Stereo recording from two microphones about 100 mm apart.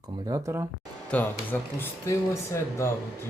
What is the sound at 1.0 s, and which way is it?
Speech, 15° left (ahead or behind).